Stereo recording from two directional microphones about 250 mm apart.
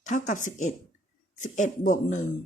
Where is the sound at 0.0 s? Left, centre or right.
Left.